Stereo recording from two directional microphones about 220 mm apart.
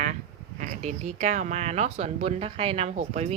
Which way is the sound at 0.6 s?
35° right (ahead or behind).